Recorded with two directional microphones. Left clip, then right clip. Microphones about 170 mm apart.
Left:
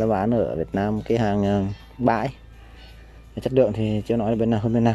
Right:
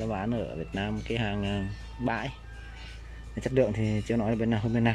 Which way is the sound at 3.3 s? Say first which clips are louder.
Left 7 dB; 10° left (ahead or behind).